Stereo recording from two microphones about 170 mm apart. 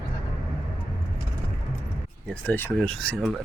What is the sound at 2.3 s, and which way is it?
Speech, 10° left (ahead or behind).